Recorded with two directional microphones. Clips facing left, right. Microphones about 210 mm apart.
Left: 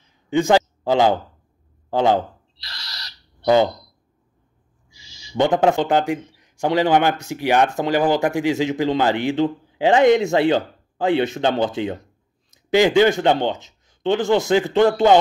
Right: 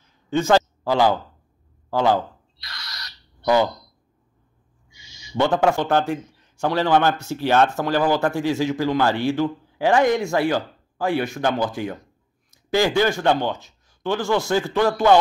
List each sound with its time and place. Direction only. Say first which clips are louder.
0.3 s a man's voice: left 2 dB; 15° left (ahead or behind)
2.6 s owl: even; 30° left (ahead or behind)
4.8 s a sound: even; 30° left (ahead or behind)
5.3 s a man's voice: left 2 dB; 15° left (ahead or behind)